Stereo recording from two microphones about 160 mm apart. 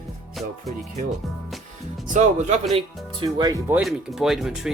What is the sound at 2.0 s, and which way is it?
Speech, 50° right (ahead or behind).